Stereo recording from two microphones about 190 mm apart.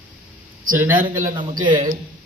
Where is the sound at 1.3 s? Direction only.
25° right (ahead or behind).